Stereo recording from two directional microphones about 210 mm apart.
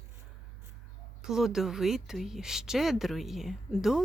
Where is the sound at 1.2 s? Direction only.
Centre (ahead or behind).